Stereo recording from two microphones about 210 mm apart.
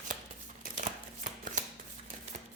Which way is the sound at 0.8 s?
35° right (ahead or behind).